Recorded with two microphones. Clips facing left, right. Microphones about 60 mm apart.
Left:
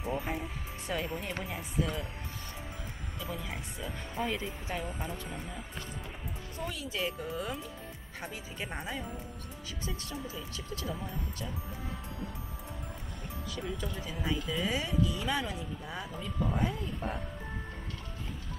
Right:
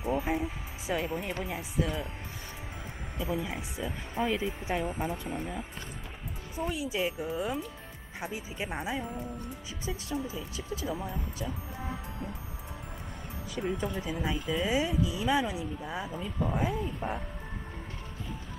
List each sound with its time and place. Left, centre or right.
0.0 s speech: centre
3.2 s speech: centre
11.4 s music: centre
13.6 s speech: right
14.1 s speech: centre